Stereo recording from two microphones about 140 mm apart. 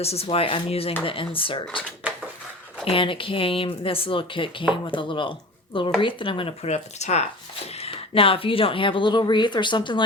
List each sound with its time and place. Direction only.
0.0 s speech: 45° left (ahead or behind)
2.0 s a sound: 10° right (ahead or behind)
2.8 s speech: 40° left (ahead or behind)
7.8 s speech: 40° left (ahead or behind)